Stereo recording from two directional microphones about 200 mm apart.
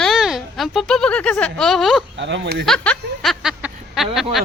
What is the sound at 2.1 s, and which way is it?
Speech, 60° right (ahead or behind).